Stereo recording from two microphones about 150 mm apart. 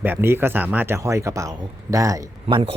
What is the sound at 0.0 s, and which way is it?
Speech, 15° right (ahead or behind).